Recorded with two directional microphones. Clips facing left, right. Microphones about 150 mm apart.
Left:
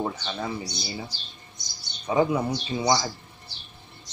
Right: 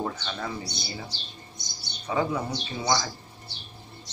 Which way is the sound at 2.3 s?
15° left (ahead or behind).